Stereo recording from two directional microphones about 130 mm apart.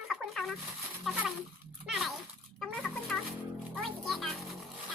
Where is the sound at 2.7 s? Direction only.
Centre (ahead or behind).